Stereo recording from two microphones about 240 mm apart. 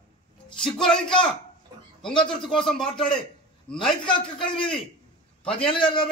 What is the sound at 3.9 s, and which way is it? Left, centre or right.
Speech, centre.